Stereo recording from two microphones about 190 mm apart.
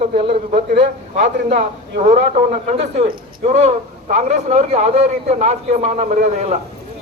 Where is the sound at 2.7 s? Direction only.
35° right (ahead or behind).